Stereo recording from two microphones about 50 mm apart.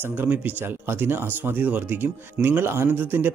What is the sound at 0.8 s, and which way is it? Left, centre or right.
Speech, right.